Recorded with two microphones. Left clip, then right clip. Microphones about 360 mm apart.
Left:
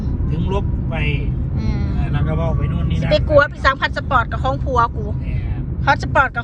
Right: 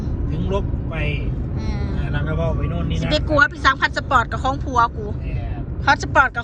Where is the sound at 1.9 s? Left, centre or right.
Left.